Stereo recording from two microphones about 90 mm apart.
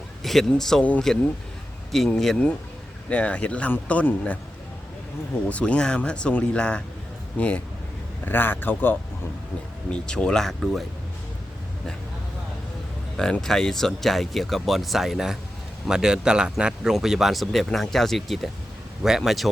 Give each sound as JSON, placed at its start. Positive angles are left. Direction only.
{"t": 0.2, "sound": "speech", "side_deg": 5}
{"t": 5.5, "sound": "a man's voice", "side_deg": 15}
{"t": 9.9, "sound": "speech", "side_deg": 10}
{"t": 13.1, "sound": "speech", "side_deg": 10}